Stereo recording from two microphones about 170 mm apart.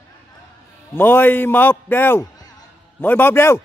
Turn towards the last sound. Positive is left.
turn(degrees=15)  # may be behind; listen again after turning